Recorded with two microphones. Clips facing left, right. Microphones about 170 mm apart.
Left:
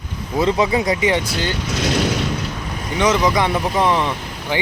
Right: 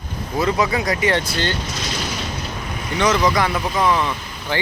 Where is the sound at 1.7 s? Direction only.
70° left (ahead or behind).